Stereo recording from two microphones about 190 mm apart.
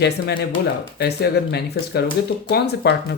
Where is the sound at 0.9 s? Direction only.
60° left (ahead or behind).